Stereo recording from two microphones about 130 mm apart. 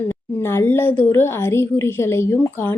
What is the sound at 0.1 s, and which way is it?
A woman's voice, 20° left (ahead or behind).